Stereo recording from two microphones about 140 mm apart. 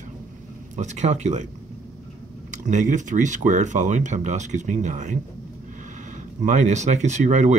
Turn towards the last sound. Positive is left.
turn(degrees=-60)  # may be behind; listen again after turning